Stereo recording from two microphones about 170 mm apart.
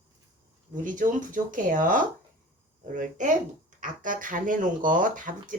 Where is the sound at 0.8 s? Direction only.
50° right (ahead or behind).